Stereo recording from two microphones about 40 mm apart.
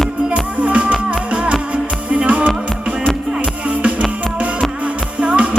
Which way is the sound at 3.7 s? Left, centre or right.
Right.